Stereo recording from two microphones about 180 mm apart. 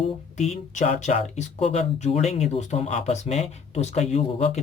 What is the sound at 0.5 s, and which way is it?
Speech, 40° left (ahead or behind).